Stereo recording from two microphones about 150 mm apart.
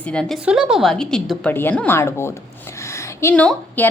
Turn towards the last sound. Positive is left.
turn(degrees=10)  # may be behind; listen again after turning